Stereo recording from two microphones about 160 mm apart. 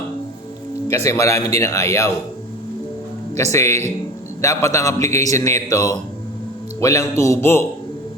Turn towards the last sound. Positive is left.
turn(degrees=15)  # may be behind; listen again after turning